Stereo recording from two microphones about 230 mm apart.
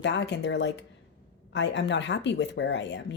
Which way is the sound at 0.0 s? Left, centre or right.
Left.